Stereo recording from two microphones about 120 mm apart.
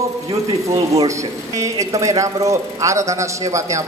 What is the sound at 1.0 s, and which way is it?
Speech, 25° right (ahead or behind).